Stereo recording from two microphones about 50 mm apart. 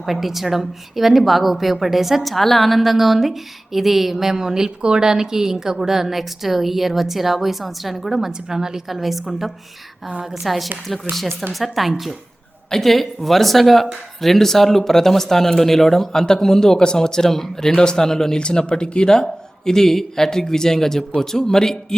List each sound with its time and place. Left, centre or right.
0.0 s a woman's voice: centre
10.1 s a woman's voice: right
10.4 s a woman's voice: centre